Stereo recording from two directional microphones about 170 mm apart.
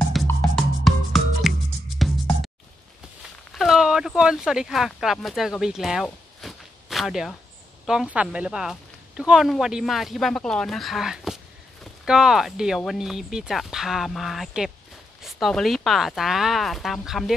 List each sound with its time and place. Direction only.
0.3 s music: centre (ahead or behind)
3.5 s speech: centre (ahead or behind)